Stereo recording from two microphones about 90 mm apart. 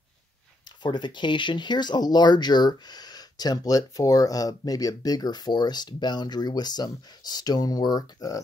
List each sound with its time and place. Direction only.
0.8 s speech: 60° left (ahead or behind)